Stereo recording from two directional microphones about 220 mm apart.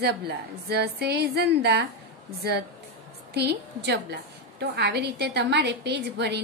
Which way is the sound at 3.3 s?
50° right (ahead or behind).